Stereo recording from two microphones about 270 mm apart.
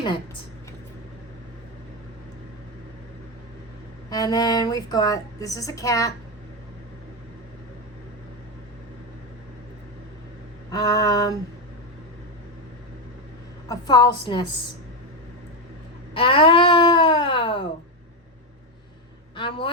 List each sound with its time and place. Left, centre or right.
4.1 s a woman's voice: centre
10.7 s a woman's voice: centre
13.7 s a woman's voice: centre
16.1 s a sound: centre
19.4 s a woman's voice: centre